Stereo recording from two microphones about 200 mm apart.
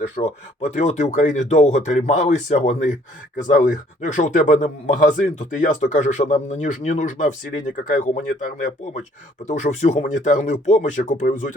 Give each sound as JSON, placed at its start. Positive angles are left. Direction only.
{"t": 0.2, "sound": "speech", "side_deg": 35}